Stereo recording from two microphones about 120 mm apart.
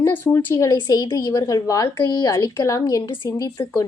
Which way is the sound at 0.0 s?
25° left (ahead or behind).